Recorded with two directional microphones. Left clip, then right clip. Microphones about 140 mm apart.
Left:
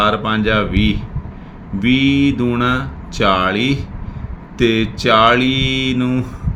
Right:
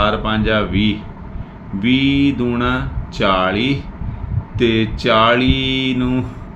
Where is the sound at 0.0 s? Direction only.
35° left (ahead or behind).